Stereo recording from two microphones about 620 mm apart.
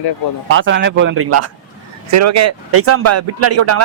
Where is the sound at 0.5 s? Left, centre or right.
Centre.